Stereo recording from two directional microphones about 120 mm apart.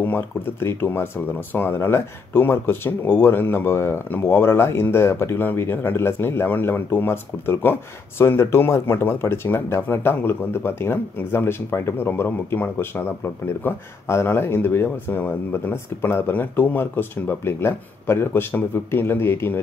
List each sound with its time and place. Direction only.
0.0 s speech: 15° left (ahead or behind)